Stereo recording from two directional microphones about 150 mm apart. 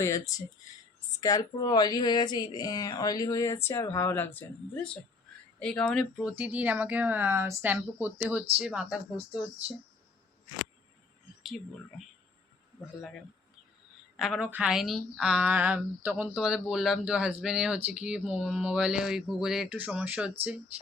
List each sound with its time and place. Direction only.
0.0 s a woman's voice: 20° left (ahead or behind); by 9.0 s 5° right (ahead or behind)
11.4 s a woman's voice: centre (ahead or behind)
14.2 s a woman's voice: 5° right (ahead or behind)